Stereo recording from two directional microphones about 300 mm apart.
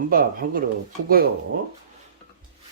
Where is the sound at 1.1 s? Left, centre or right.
Right.